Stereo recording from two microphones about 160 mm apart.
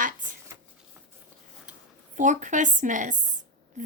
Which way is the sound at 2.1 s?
50° right (ahead or behind).